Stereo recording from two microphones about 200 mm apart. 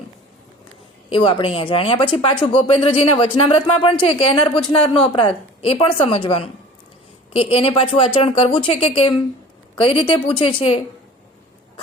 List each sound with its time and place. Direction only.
1.1 s a woman's voice: 25° left (ahead or behind)